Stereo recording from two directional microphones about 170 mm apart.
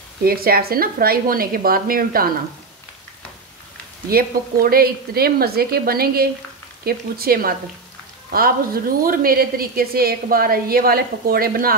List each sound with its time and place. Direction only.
0.2 s a woman's voice: 60° right (ahead or behind)
4.1 s a woman's voice: 60° right (ahead or behind)